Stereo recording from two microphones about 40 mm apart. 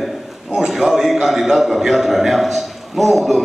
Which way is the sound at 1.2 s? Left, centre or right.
Centre.